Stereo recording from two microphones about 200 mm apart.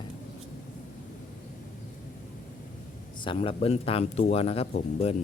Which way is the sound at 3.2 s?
30° left (ahead or behind).